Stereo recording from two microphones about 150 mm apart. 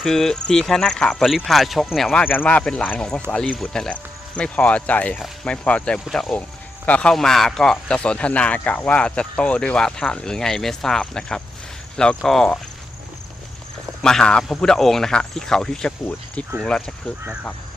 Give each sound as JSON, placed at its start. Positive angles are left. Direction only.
{"t": 0.0, "sound": "speech", "side_deg": 5}
{"t": 2.2, "sound": "speech", "side_deg": 10}
{"t": 14.0, "sound": "speech", "side_deg": 5}